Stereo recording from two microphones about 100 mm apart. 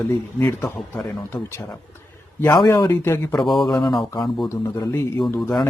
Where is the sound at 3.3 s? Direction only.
Centre (ahead or behind).